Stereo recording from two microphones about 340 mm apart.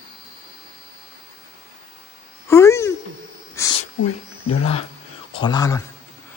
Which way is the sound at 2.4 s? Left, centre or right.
Centre.